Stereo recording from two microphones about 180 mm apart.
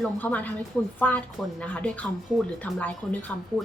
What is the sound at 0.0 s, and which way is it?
A woman's voice, 10° left (ahead or behind).